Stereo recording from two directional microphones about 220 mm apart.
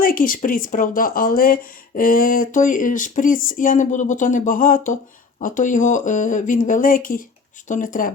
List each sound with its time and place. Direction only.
0.0 s speech: 40° left (ahead or behind)